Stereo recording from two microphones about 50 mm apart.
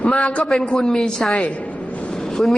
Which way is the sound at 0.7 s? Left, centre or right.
Centre.